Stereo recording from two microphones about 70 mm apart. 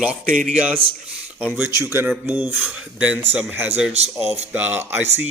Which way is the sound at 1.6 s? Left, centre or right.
Right.